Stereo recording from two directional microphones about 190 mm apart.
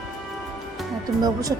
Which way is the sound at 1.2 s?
20° right (ahead or behind).